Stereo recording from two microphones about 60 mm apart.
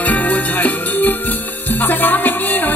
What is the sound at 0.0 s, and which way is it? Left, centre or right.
Music, left.